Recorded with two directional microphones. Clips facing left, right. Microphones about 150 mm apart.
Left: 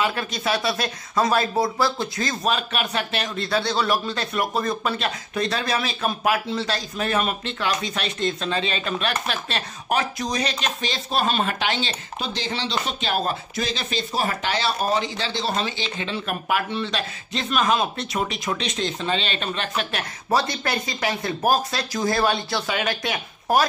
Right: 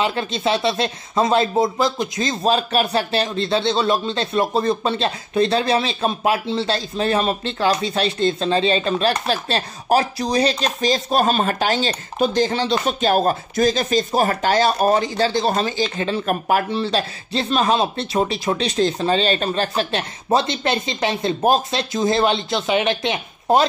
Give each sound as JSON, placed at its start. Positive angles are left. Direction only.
{"t": 0.0, "sound": "speech", "side_deg": -25}
{"t": 2.5, "sound": "speech", "side_deg": -35}